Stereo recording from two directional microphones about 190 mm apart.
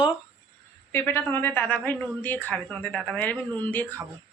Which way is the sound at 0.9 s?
10° left (ahead or behind).